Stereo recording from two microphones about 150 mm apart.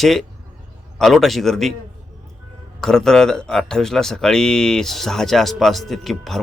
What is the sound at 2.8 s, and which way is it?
Speech, 5° left (ahead or behind).